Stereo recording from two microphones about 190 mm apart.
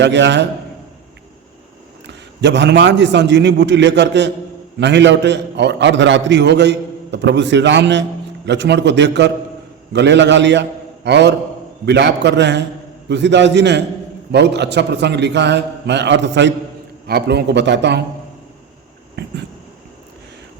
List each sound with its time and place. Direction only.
0.0 s a man's voice: 70° right (ahead or behind)
2.0 s a man's voice: 65° right (ahead or behind)
19.2 s a man's voice: 60° right (ahead or behind)